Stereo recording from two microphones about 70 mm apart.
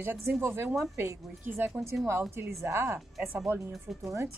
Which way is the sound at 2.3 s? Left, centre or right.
Right.